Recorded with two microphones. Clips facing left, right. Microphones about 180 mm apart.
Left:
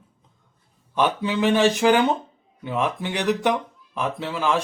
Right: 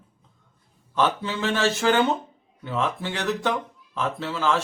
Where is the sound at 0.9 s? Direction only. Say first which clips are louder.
Left 2 dB; 15° left (ahead or behind).